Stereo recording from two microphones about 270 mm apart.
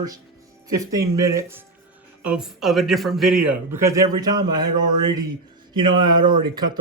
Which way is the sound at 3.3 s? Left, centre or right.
Right.